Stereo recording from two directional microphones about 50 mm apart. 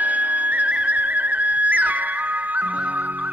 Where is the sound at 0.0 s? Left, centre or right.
Right.